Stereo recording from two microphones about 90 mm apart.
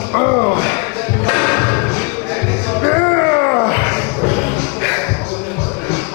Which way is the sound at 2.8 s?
20° left (ahead or behind).